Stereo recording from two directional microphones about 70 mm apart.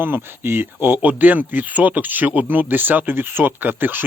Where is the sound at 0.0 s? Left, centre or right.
Right.